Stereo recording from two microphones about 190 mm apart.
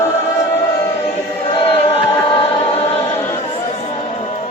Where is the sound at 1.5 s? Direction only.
30° left (ahead or behind).